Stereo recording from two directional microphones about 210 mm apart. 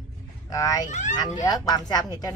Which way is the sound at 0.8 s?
35° left (ahead or behind).